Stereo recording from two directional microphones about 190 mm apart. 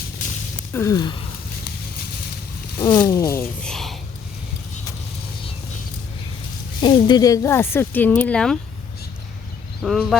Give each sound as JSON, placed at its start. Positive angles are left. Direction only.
{"t": 0.7, "sound": "speech", "side_deg": 15}
{"t": 2.7, "sound": "speech", "side_deg": 25}
{"t": 6.8, "sound": "speech", "side_deg": 20}
{"t": 9.8, "sound": "speech", "side_deg": 0}